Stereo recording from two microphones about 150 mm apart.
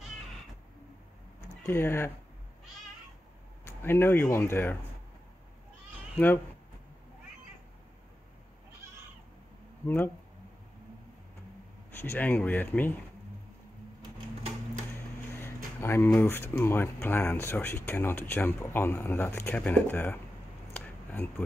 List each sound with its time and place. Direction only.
1.6 s speech: 15° left (ahead or behind)
3.6 s speech: 15° left (ahead or behind)
6.1 s speech: 10° left (ahead or behind)
9.8 s speech: 15° left (ahead or behind)
11.9 s speech: 15° left (ahead or behind)
15.3 s a sound: 15° left (ahead or behind)
16.1 s speech: 15° left (ahead or behind)
20.7 s a sound: 10° left (ahead or behind)